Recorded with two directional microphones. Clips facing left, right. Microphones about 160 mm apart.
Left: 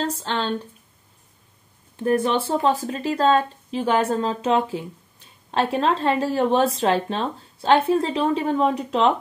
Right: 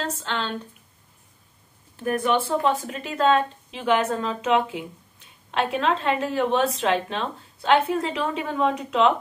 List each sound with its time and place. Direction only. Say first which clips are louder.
0.0 s speech: left 3 dB; 35° left (ahead or behind)
2.0 s speech: left 2 dB; 30° left (ahead or behind)